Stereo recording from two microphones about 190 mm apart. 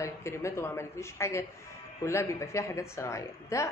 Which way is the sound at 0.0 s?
15° left (ahead or behind).